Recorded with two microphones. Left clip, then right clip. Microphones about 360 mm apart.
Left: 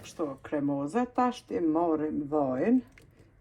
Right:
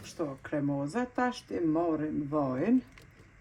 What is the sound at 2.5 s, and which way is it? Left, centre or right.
Speech, centre.